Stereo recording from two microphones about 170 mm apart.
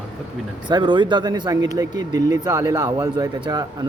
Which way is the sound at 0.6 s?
25° right (ahead or behind).